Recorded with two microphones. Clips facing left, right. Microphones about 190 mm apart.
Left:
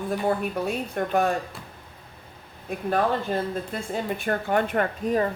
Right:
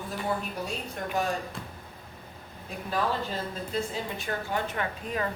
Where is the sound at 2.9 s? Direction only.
55° left (ahead or behind).